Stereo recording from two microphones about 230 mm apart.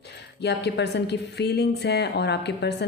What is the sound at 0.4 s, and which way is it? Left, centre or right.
A woman's voice, left.